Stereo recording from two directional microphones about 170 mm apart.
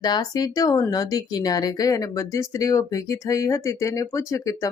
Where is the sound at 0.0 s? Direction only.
25° left (ahead or behind).